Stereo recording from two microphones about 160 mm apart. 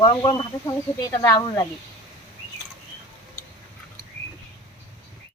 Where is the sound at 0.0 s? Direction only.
25° left (ahead or behind).